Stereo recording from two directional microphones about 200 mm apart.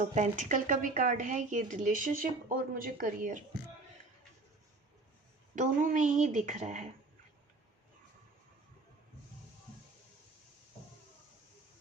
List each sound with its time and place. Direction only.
0.0 s a woman's voice: 35° right (ahead or behind)
5.5 s a woman's voice: 40° right (ahead or behind)